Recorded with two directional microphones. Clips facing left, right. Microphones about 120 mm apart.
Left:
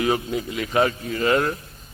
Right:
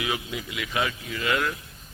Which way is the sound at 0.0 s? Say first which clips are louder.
Left 8 dB; 40° left (ahead or behind).